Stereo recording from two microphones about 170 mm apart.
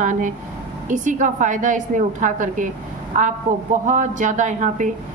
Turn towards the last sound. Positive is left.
turn(degrees=-45)  # may be behind; listen again after turning